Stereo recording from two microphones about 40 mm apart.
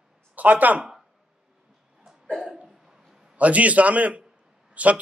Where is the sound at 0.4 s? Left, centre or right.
Right.